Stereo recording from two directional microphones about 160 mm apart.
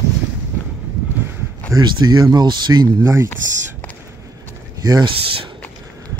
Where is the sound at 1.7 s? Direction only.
25° right (ahead or behind).